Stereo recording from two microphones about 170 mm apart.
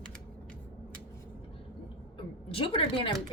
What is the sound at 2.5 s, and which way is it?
Speech, 30° left (ahead or behind).